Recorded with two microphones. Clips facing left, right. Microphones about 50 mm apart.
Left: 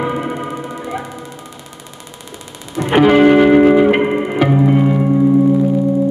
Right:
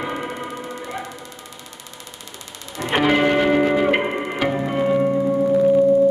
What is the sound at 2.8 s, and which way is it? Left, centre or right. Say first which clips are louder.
Music: left 8 dB; centre.